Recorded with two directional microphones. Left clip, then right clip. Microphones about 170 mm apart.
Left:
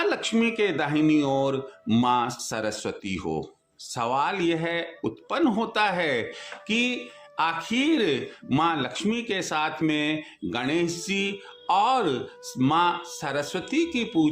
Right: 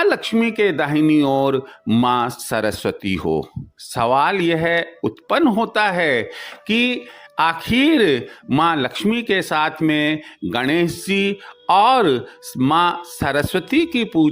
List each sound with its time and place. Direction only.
0.0 s speech: 40° right (ahead or behind)